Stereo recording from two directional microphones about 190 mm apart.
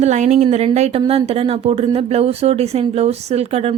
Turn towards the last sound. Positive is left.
turn(degrees=-35)  # may be behind; listen again after turning